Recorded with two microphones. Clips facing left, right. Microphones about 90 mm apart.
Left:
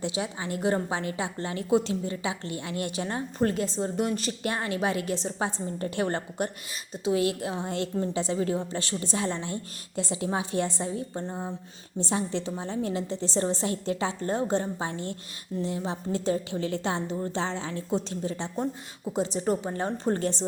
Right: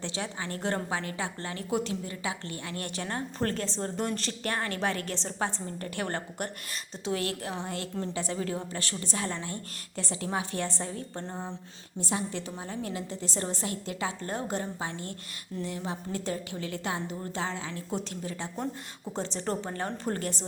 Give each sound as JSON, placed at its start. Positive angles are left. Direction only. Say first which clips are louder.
{"t": 0.0, "sound": "a woman's voice", "louder": "left 4 dB", "side_deg": 15}
{"t": 11.9, "sound": "a woman's voice", "louder": "left 4 dB", "side_deg": 25}